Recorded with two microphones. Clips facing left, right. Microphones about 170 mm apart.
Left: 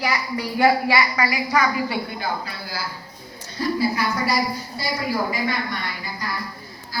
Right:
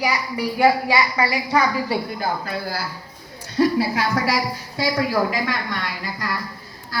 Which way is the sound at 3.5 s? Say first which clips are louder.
Right 4 dB; 90° right.